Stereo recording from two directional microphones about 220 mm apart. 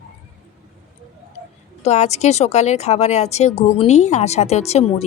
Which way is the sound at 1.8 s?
30° left (ahead or behind).